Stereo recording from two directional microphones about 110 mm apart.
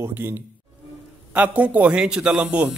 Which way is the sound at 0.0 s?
20° right (ahead or behind).